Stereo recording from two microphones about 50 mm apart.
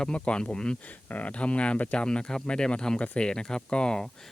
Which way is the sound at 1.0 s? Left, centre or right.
Left.